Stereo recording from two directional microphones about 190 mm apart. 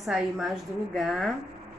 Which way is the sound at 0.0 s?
Centre (ahead or behind).